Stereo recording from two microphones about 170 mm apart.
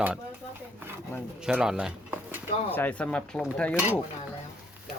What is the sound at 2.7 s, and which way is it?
Speech, 10° left (ahead or behind).